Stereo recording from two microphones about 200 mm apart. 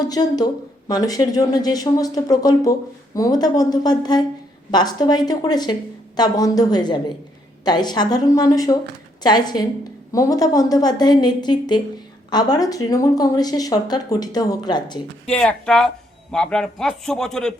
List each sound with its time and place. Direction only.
0.0 s speech: 20° left (ahead or behind)
15.3 s a man's voice: 5° left (ahead or behind)